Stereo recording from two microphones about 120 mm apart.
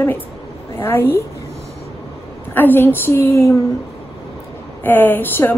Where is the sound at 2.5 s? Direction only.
15° left (ahead or behind).